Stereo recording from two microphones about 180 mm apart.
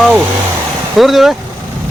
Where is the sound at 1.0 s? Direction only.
Centre (ahead or behind).